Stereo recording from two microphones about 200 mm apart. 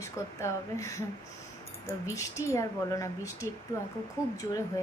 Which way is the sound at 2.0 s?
15° left (ahead or behind).